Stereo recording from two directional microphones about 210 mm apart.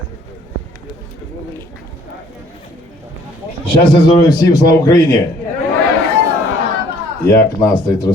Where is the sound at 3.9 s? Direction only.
15° left (ahead or behind).